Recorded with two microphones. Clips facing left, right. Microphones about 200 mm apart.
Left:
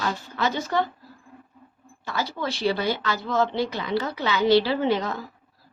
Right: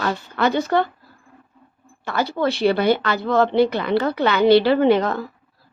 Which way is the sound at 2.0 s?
60° right (ahead or behind).